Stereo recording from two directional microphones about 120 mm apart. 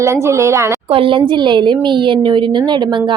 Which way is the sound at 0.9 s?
45° right (ahead or behind).